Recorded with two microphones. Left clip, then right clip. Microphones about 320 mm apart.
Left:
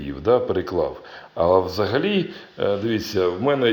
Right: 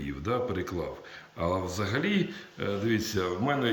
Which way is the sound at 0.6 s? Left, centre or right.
Centre.